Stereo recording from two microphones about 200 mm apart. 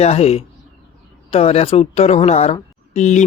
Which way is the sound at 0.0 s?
30° left (ahead or behind).